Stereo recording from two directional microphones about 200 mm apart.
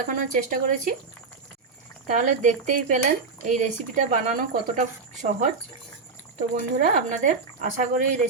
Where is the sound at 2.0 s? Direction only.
40° right (ahead or behind).